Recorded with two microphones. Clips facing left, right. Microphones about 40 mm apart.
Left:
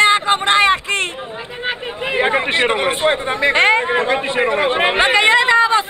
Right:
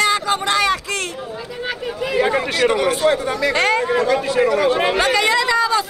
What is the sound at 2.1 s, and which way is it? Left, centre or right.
Speech, left.